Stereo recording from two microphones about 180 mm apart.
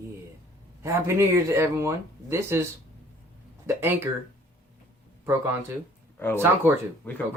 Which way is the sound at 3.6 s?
10° right (ahead or behind).